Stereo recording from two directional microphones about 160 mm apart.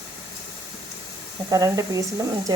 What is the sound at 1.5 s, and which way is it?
Speech, 20° right (ahead or behind).